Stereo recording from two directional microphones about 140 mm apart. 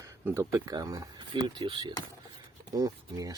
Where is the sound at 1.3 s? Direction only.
35° right (ahead or behind).